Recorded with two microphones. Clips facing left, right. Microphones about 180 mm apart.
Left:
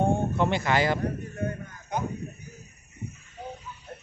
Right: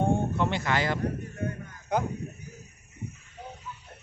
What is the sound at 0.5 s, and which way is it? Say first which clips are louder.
Speech: left 3 dB; 10° left (ahead or behind).